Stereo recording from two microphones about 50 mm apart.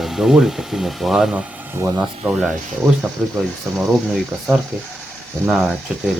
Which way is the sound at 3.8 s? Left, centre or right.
Centre.